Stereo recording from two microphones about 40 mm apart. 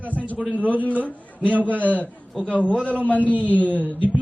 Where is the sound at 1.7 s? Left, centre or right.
Right.